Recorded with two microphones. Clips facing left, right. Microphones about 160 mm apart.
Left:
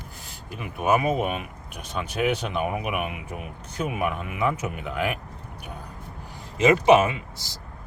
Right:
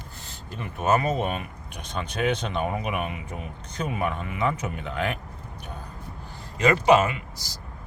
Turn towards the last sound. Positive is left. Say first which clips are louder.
# left 1 dB
turn(degrees=25)  # may be behind; listen again after turning